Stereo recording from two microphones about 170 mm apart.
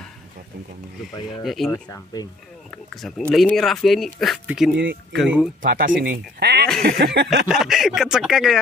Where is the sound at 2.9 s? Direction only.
5° left (ahead or behind).